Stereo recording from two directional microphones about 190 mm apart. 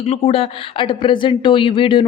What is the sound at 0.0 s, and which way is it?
Speech, 30° left (ahead or behind).